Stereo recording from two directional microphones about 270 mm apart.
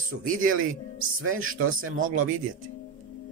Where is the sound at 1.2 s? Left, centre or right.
Right.